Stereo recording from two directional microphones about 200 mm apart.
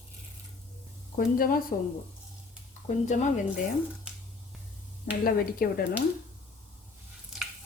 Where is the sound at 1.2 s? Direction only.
45° left (ahead or behind).